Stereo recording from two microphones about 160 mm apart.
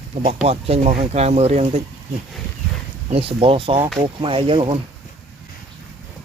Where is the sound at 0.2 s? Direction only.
40° right (ahead or behind).